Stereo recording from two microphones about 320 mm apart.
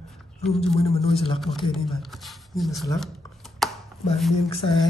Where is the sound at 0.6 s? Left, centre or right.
Centre.